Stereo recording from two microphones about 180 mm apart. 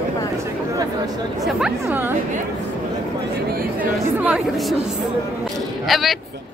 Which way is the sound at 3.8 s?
10° right (ahead or behind).